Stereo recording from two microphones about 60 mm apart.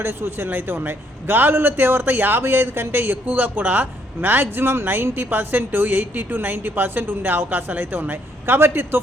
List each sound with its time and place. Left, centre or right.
0.0 s a man's voice: right